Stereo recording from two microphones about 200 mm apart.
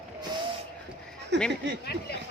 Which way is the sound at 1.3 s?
60° right (ahead or behind).